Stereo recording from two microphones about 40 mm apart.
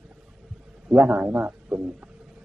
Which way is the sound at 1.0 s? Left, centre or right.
Right.